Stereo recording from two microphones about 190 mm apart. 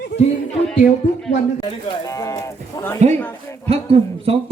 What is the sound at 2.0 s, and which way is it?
Speech, 15° left (ahead or behind).